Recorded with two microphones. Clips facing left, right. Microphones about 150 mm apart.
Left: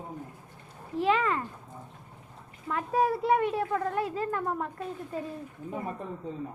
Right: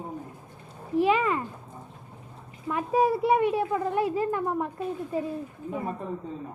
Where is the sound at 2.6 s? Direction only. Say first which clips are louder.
Right 3 dB; 10° right (ahead or behind).